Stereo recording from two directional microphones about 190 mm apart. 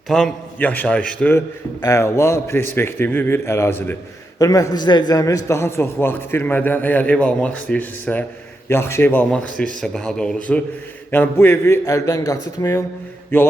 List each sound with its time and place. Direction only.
0.1 s a man's voice: 5° left (ahead or behind)